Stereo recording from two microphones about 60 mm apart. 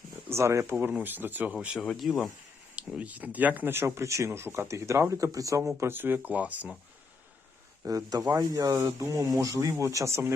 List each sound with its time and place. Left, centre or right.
0.3 s speech: right
1.0 s speech: right
2.0 s speech: centre
2.8 s speech: centre
3.1 s speech: right
3.8 s speech: right
4.7 s speech: right
5.9 s speech: right
7.9 s speech: right
8.8 s speech: right
9.7 s speech: right